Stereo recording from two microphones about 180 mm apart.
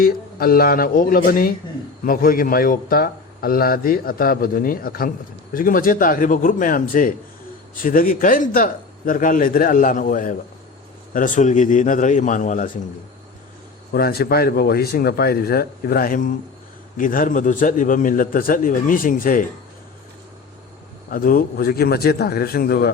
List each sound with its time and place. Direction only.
0.0 s a man's voice: 55° left (ahead or behind)
13.9 s a man's voice: 60° left (ahead or behind)
21.1 s speech: 50° left (ahead or behind)